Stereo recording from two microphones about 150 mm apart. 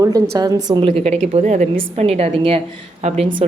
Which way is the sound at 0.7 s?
35° right (ahead or behind).